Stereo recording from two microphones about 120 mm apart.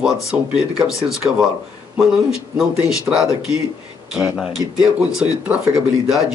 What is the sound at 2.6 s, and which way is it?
Speech, 5° right (ahead or behind).